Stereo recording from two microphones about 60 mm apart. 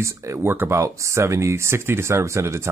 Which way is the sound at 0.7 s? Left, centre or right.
Right.